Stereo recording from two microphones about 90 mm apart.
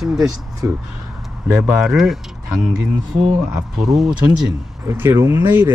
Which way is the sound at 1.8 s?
5° right (ahead or behind).